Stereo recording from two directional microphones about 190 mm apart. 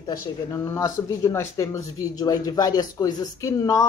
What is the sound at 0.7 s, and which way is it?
Speech, 20° left (ahead or behind).